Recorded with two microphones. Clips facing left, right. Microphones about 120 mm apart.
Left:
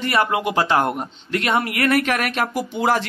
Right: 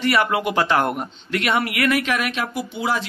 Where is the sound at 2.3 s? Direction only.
45° left (ahead or behind).